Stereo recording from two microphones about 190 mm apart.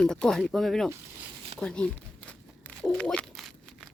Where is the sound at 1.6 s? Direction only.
5° left (ahead or behind).